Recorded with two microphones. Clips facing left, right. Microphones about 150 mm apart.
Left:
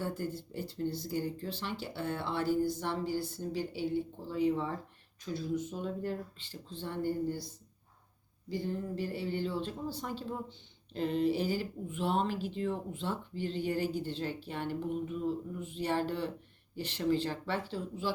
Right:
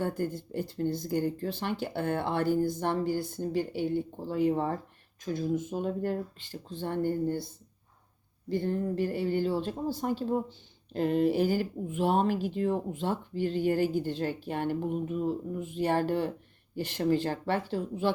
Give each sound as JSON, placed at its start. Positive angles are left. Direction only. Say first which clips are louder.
{"t": 0.0, "sound": "speech", "louder": "right 5 dB", "side_deg": -50}
{"t": 8.4, "sound": "speech", "louder": "right 6 dB", "side_deg": -60}